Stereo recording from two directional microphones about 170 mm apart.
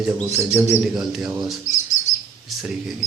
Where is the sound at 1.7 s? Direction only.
45° left (ahead or behind).